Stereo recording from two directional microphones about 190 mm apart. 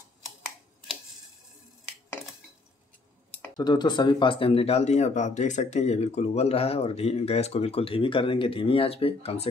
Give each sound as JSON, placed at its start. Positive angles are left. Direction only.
{"t": 3.5, "sound": "speech", "side_deg": 20}